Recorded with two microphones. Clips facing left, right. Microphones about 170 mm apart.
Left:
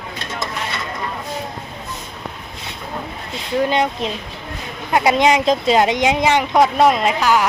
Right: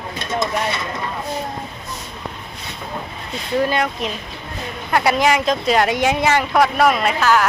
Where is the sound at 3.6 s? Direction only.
20° left (ahead or behind).